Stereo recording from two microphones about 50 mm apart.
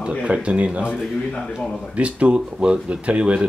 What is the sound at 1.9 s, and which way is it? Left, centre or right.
Speech, right.